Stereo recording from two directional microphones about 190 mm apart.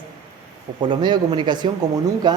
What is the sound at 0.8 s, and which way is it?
Speech, 25° right (ahead or behind).